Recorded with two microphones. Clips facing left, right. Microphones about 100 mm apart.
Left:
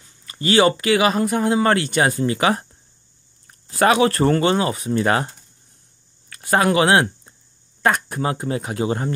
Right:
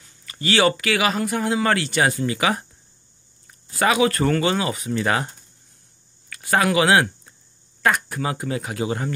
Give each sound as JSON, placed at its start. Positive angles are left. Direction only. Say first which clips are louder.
{"t": 0.0, "sound": "a sound", "louder": "left 3 dB", "side_deg": 30}
{"t": 0.5, "sound": "speech", "louder": "left 3 dB", "side_deg": 25}
{"t": 3.7, "sound": "speech", "louder": "left 3 dB", "side_deg": 40}
{"t": 6.5, "sound": "speech", "louder": "left 2 dB", "side_deg": 35}